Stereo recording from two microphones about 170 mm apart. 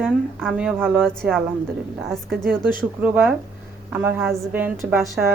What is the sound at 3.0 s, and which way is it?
Speech, 10° right (ahead or behind).